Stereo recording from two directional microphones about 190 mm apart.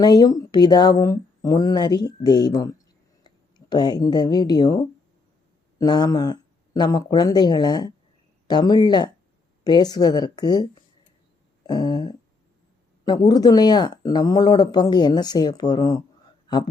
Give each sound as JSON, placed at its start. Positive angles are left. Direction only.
{"t": 0.0, "sound": "speech", "side_deg": 20}
{"t": 5.8, "sound": "speech", "side_deg": 20}